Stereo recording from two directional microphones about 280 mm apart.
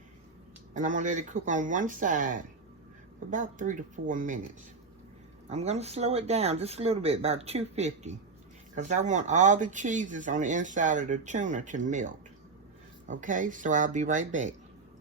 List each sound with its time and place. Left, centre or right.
0.7 s speech: right
5.5 s speech: right